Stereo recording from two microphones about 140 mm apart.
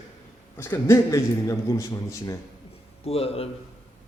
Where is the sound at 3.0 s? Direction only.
45° left (ahead or behind).